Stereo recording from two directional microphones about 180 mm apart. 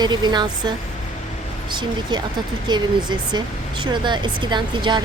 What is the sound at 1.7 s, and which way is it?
A woman's voice, 25° right (ahead or behind).